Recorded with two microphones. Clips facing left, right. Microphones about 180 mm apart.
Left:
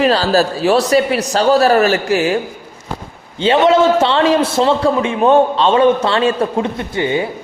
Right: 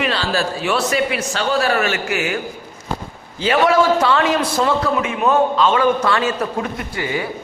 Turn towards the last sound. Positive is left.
turn(degrees=25)  # may be behind; listen again after turning